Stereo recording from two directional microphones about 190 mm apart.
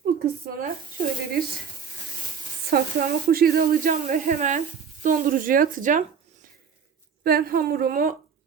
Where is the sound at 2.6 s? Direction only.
50° right (ahead or behind).